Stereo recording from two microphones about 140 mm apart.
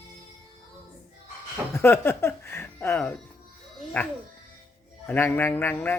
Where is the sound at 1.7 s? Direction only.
15° left (ahead or behind).